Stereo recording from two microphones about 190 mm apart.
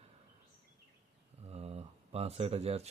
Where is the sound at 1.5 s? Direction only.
30° right (ahead or behind).